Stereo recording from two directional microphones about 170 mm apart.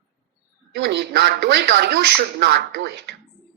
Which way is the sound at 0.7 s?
90° right.